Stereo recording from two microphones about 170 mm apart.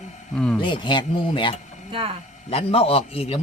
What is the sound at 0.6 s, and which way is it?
A man's voice, 30° left (ahead or behind).